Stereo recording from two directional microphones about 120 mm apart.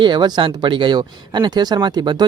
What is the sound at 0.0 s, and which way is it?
Speech, 40° right (ahead or behind).